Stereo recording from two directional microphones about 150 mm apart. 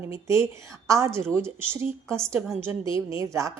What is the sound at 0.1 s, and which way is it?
A woman's voice, 20° right (ahead or behind).